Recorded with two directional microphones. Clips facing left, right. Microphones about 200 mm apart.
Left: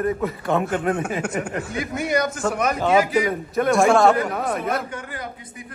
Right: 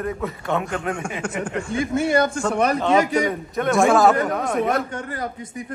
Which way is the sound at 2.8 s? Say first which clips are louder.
Even; 5° left (ahead or behind).